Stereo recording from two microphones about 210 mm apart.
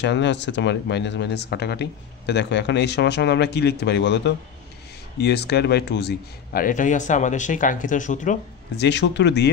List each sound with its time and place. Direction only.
0.0 s a man's voice: 55° left (ahead or behind); by 8.4 s 35° left (ahead or behind)
8.7 s speech: 55° left (ahead or behind)